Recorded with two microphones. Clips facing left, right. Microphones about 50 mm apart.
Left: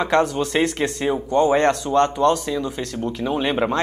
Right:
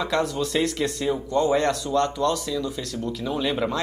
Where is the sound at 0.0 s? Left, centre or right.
Left.